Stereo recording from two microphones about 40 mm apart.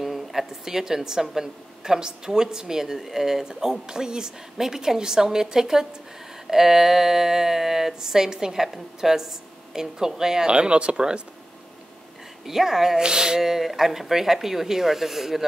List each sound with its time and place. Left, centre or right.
0.0 s speech: centre
10.5 s speech: right
12.4 s speech: centre